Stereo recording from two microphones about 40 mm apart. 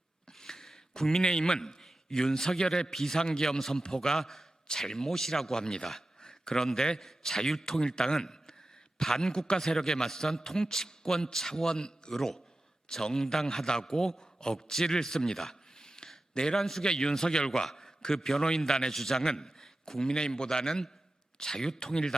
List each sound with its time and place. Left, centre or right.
0.3 s a man's voice: centre
3.6 s a man's voice: centre
12.1 s a man's voice: centre